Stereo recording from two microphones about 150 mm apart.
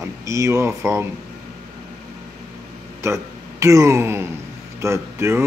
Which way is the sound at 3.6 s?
20° right (ahead or behind).